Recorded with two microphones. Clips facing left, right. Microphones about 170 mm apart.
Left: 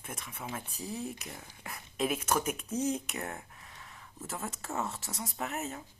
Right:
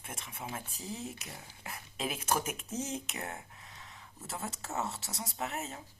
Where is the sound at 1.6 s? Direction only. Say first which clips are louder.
Left 5 dB; 30° right (ahead or behind).